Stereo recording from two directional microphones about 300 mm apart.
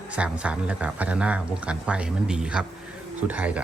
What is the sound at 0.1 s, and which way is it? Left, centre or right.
Speech, centre.